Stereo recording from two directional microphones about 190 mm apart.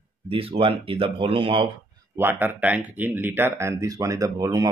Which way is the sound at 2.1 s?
10° right (ahead or behind).